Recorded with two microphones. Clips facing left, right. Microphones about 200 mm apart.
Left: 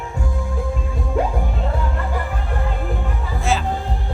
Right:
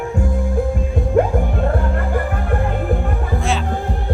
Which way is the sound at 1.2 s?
55° right (ahead or behind).